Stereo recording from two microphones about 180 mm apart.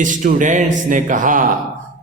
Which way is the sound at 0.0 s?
45° right (ahead or behind).